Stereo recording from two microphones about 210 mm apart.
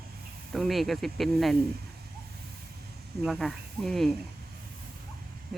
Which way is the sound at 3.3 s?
Centre (ahead or behind).